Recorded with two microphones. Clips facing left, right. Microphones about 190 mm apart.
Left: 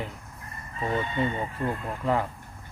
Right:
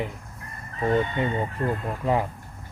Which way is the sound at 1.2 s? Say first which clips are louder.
Right 1 dB; 15° right (ahead or behind).